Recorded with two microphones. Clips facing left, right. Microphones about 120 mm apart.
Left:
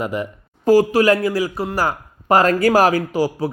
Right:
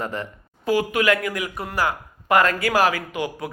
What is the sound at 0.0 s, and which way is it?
Speech, 10° left (ahead or behind).